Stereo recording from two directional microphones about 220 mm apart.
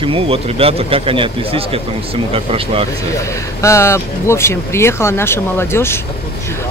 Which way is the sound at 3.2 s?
15° left (ahead or behind).